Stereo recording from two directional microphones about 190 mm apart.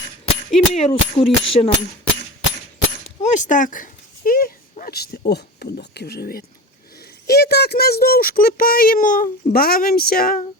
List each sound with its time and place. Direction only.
0.7 s speech: 35° left (ahead or behind)
3.2 s speech: 40° left (ahead or behind)